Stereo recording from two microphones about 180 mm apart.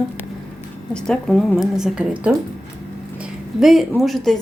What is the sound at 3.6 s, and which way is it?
Speech, centre (ahead or behind).